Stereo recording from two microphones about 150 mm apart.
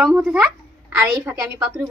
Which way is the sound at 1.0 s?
15° right (ahead or behind).